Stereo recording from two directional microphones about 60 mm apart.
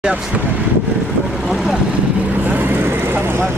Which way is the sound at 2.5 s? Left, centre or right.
Right.